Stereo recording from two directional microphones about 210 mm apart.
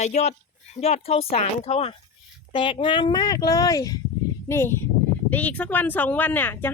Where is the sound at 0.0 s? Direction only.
30° left (ahead or behind).